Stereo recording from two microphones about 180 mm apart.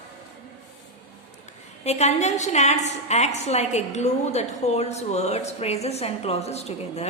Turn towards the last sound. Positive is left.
turn(degrees=35)  # may be behind; listen again after turning